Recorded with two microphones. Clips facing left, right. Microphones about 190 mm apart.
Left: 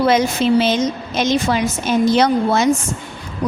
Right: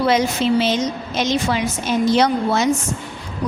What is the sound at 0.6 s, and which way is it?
A woman's voice, 50° left (ahead or behind).